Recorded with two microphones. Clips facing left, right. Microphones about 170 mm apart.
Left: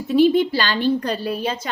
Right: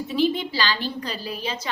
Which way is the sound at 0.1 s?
50° left (ahead or behind).